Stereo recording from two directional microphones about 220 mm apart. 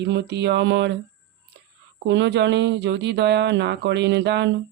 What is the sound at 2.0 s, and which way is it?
Speech, 55° right (ahead or behind).